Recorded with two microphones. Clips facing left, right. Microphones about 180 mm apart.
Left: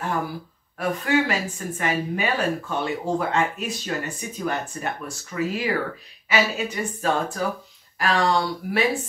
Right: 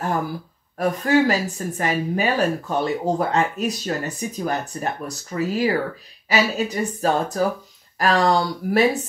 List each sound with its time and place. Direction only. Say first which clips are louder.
0.7 s speech: right 4 dB; 40° right (ahead or behind)